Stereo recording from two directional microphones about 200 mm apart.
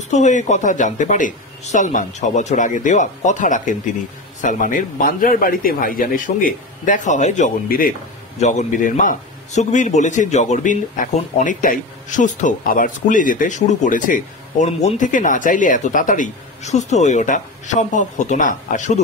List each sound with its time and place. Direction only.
0.1 s a man's voice: 35° left (ahead or behind)